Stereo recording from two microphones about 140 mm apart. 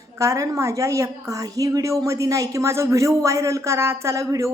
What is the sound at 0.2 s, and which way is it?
A woman's voice, 25° right (ahead or behind).